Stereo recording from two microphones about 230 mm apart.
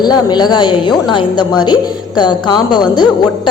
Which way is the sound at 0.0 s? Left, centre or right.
Centre.